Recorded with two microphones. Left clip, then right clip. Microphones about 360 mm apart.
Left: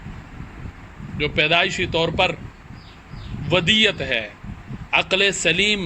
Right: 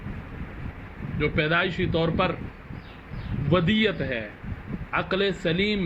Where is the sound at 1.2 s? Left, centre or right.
Centre.